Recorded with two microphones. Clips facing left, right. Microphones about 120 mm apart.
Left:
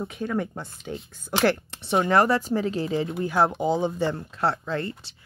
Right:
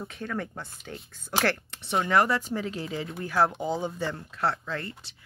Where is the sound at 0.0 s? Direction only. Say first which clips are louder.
Left 6 dB; 15° left (ahead or behind).